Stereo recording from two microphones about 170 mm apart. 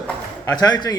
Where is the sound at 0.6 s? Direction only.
20° left (ahead or behind).